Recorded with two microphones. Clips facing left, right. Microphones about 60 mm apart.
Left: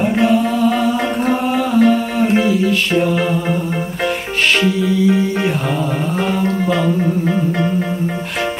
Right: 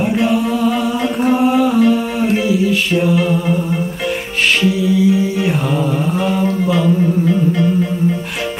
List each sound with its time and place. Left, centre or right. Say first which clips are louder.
0.0 s music: left 1 dB; centre
2.4 s mantra: even; centre
4.8 s music: right 3 dB; centre
7.2 s music: right 2 dB; left